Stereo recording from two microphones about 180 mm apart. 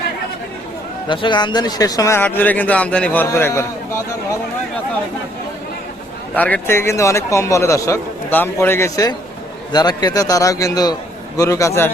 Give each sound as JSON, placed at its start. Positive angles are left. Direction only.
{"t": 1.0, "sound": "a man's voice", "side_deg": 25}
{"t": 6.3, "sound": "a man's voice", "side_deg": 10}